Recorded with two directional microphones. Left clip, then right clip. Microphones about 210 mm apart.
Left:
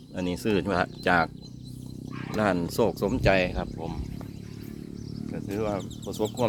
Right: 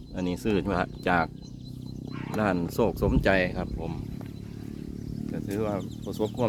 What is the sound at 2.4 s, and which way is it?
Speech, 5° left (ahead or behind).